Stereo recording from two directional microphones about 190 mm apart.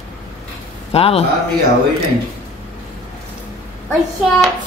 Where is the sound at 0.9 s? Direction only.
30° left (ahead or behind).